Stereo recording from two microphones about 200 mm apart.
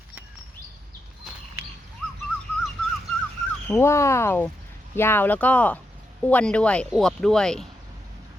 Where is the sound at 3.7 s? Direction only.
15° left (ahead or behind).